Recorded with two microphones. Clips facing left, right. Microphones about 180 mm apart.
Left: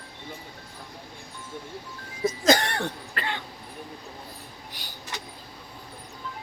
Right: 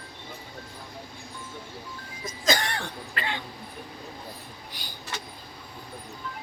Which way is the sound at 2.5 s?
55° left (ahead or behind).